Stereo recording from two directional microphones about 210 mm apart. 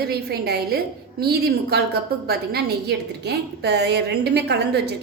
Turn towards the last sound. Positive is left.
turn(degrees=-50)  # may be behind; listen again after turning